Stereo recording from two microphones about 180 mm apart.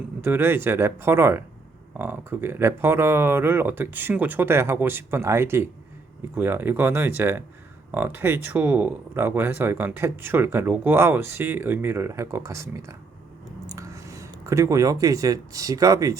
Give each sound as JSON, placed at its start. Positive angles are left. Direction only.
{"t": 0.2, "sound": "speech", "side_deg": -10}